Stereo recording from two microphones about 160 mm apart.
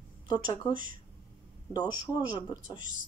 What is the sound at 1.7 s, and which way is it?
Speech, 25° left (ahead or behind).